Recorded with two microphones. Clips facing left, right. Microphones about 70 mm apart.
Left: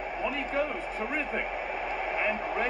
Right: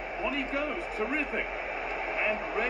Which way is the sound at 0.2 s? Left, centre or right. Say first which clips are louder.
Left 1 dB; left.